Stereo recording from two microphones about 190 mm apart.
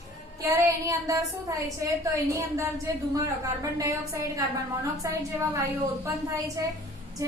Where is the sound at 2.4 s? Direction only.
15° right (ahead or behind).